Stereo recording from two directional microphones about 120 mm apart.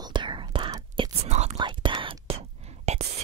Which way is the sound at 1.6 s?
40° right (ahead or behind).